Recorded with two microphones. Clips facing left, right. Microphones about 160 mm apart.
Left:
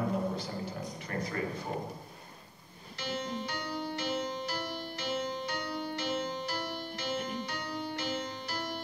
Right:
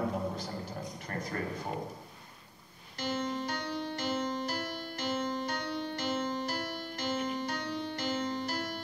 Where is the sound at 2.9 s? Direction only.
45° right (ahead or behind).